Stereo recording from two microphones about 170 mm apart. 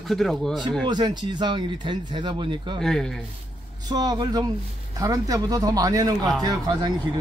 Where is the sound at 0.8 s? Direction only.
25° right (ahead or behind).